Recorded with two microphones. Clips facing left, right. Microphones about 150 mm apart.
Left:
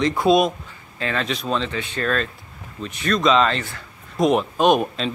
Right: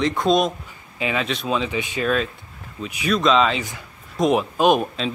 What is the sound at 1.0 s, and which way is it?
Speech, 10° right (ahead or behind).